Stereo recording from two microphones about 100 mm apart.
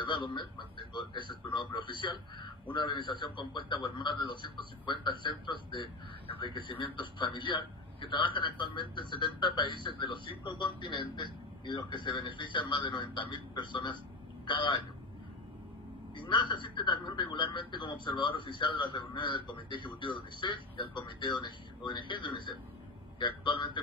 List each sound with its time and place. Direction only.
0.0 s a man's voice: 50° left (ahead or behind)
16.2 s a man's voice: 55° left (ahead or behind)